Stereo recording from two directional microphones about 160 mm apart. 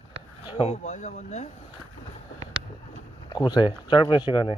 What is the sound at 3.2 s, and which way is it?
Speech, 25° left (ahead or behind).